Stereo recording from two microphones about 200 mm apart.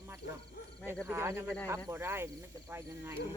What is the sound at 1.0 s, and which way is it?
Speech, 15° right (ahead or behind).